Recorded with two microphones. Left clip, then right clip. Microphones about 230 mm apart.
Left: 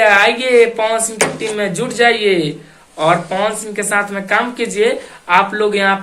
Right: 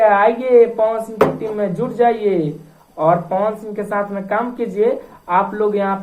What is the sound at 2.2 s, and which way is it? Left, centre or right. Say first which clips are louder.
Speech: left 3 dB; left.